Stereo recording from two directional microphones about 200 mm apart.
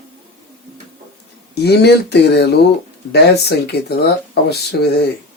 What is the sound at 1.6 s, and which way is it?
Speech, 55° left (ahead or behind).